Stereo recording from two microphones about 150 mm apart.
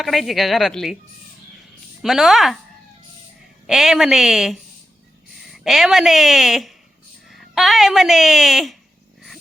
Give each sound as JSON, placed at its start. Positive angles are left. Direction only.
{"t": 0.0, "sound": "a woman's voice", "side_deg": 0}
{"t": 2.0, "sound": "a woman's voice", "side_deg": 0}
{"t": 3.7, "sound": "a woman's voice", "side_deg": 0}